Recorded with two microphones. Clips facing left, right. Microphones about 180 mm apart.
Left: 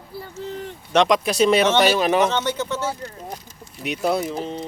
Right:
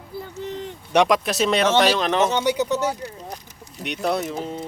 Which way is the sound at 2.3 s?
15° right (ahead or behind).